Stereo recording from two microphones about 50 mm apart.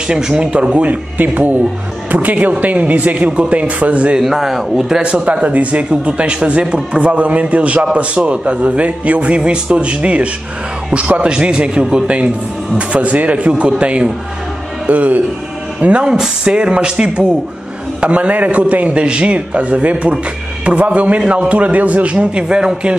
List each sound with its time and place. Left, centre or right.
0.1 s a man's voice: centre
4.2 s a man's voice: centre; by 14.1 s right
14.9 s speech: right
15.8 s a man's voice: right